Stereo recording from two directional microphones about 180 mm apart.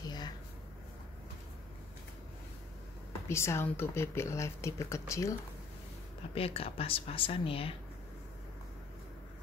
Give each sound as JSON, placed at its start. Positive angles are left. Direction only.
{"t": 0.0, "sound": "a sound", "side_deg": 20}
{"t": 3.3, "sound": "speech", "side_deg": 15}
{"t": 6.3, "sound": "speech", "side_deg": 30}